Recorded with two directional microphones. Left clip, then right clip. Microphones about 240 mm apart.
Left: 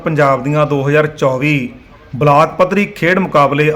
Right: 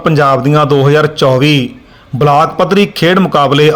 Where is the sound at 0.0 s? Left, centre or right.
Centre.